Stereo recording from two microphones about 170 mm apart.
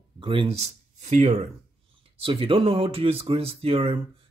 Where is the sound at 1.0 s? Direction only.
40° right (ahead or behind).